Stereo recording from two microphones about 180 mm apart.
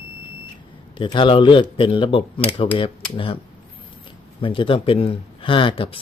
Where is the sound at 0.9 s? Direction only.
30° left (ahead or behind).